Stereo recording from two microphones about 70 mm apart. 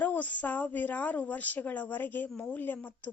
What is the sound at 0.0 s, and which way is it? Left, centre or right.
A woman's voice, left.